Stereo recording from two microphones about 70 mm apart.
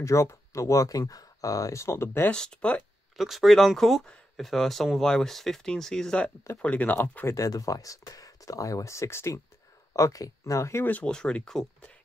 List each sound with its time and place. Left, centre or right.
0.0 s speech: left
2.3 s speech: centre
3.2 s speech: centre; by 7.2 s left
7.2 s speech: left
10.8 s speech: left